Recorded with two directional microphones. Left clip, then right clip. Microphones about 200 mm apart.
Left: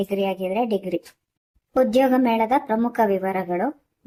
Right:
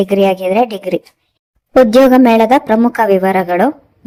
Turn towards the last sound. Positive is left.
turn(degrees=-40)  # may be behind; listen again after turning